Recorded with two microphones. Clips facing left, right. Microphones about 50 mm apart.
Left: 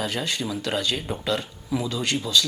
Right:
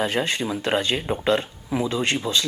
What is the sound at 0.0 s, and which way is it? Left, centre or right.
Speech, right.